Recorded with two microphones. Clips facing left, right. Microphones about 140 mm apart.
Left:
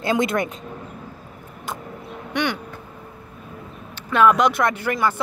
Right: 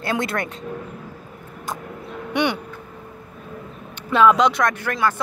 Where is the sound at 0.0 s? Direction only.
20° left (ahead or behind).